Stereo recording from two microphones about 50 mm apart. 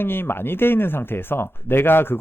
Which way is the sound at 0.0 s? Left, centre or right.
Left.